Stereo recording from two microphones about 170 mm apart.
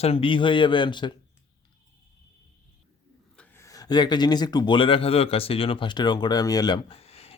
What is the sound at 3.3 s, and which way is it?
Speech, 10° left (ahead or behind).